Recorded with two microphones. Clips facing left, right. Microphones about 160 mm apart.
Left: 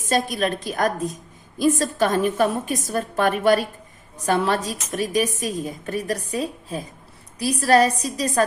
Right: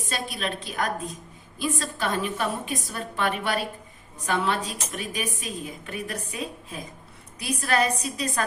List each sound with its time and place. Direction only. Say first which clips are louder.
0.1 s a woman's voice: left 10 dB; 45° left (ahead or behind)